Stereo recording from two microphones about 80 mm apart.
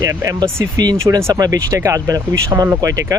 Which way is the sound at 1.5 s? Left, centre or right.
Right.